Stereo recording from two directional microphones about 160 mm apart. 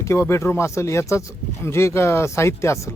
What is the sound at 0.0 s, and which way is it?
Speech, 15° left (ahead or behind).